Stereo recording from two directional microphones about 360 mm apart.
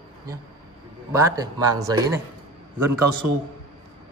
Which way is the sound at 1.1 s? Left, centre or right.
Centre.